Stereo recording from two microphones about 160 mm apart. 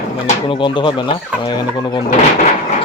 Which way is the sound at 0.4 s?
30° left (ahead or behind).